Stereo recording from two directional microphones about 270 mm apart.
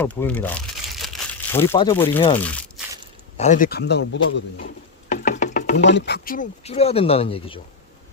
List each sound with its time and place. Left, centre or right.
0.0 s crumpling: centre
1.6 s speech: centre
2.4 s crumpling: centre
3.3 s a man's voice: left
4.5 s knock: left
5.5 s a sound: left
5.9 s speech: left; by 7.6 s centre